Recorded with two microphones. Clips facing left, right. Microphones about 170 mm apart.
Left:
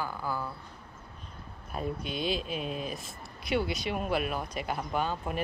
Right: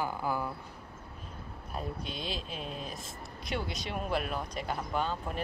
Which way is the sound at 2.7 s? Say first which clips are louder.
Left 5 dB; 65° left (ahead or behind).